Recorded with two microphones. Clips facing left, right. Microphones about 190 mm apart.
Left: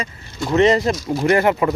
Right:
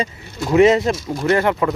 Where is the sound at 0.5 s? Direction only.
5° right (ahead or behind).